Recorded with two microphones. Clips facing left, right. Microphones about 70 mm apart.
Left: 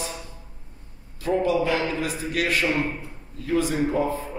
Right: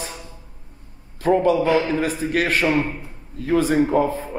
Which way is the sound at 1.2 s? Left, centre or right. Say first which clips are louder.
Right 5 dB; right.